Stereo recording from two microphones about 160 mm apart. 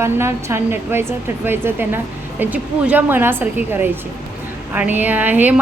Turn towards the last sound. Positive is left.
turn(degrees=-10)  # may be behind; listen again after turning